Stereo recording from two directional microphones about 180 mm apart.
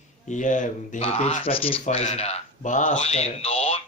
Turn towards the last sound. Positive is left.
turn(degrees=30)  # may be behind; listen again after turning